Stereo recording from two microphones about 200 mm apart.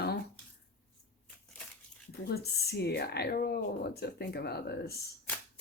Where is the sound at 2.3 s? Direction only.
55° left (ahead or behind).